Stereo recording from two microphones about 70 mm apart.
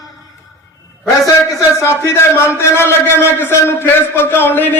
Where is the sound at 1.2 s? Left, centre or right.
Left.